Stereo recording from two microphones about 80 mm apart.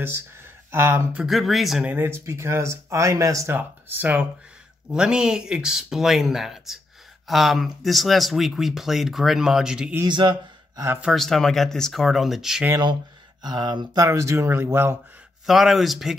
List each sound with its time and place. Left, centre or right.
0.7 s speech: right
1.1 s speech: centre
2.0 s speech: right
3.5 s speech: right
4.9 s speech: centre
10.0 s speech: right
11.1 s speech: centre
13.4 s speech: right
13.9 s speech: right
15.4 s speech: centre